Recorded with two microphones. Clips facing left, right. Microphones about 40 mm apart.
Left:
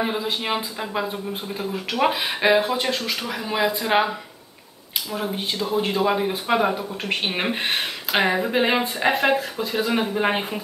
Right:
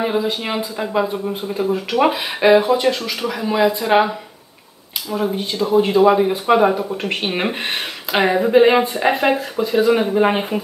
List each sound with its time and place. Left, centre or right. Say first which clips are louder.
0.0 s speech: right 5 dB; centre
5.1 s speech: right 6 dB; centre
8.7 s speech: right 7 dB; right
9.2 s speech: right 3 dB; centre